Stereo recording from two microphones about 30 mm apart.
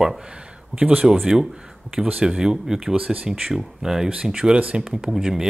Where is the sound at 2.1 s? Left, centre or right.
Right.